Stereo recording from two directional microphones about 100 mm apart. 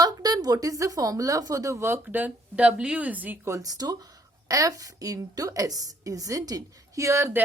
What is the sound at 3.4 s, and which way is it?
A woman's voice, 35° right (ahead or behind).